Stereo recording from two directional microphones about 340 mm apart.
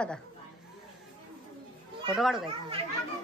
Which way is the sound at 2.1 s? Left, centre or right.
Centre.